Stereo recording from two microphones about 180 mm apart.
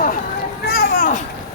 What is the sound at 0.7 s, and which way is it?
Children playing, 55° left (ahead or behind).